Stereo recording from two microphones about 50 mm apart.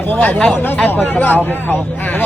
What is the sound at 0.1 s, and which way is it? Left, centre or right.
Speech, left.